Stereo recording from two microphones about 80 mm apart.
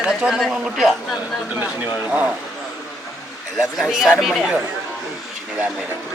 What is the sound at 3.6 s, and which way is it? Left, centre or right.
Speech, centre.